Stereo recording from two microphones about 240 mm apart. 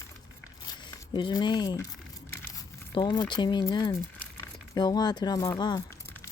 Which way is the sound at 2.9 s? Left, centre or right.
Centre.